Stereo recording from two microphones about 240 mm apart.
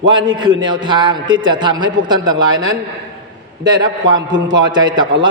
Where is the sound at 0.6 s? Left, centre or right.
Centre.